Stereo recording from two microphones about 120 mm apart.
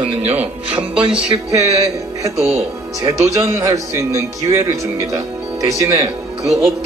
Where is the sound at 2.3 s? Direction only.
65° right (ahead or behind).